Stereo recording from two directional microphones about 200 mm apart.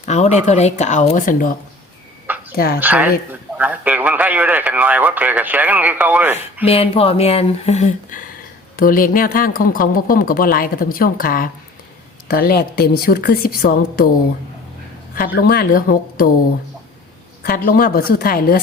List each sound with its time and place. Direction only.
0.0 s speech: 35° left (ahead or behind)
2.3 s a sound: 10° right (ahead or behind)
2.8 s speech: 5° right (ahead or behind)
6.7 s speech: 30° left (ahead or behind); by 14.1 s 50° left (ahead or behind)
15.4 s speech: 50° left (ahead or behind)
17.4 s speech: 45° left (ahead or behind)